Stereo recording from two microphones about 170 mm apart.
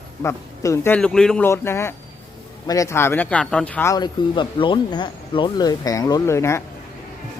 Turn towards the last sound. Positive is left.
turn(degrees=15)  # may be behind; listen again after turning